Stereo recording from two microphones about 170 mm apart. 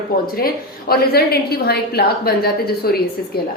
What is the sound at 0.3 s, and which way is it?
A woman's voice, 60° left (ahead or behind).